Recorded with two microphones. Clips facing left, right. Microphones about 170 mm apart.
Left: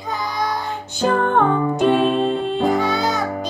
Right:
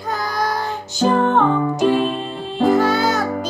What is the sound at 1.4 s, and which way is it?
Music, 60° left (ahead or behind).